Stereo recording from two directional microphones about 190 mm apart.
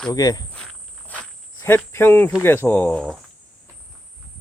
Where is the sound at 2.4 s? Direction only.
10° left (ahead or behind).